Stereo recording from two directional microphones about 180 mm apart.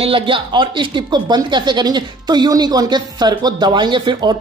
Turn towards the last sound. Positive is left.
turn(degrees=-25)  # may be behind; listen again after turning